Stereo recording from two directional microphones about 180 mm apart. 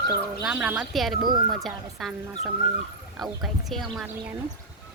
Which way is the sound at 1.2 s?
25° right (ahead or behind).